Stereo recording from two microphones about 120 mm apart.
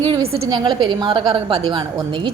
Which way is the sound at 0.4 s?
40° right (ahead or behind).